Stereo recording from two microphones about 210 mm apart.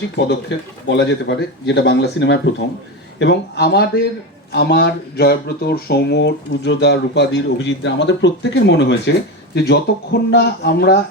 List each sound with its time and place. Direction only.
0.5 s speech: 60° left (ahead or behind)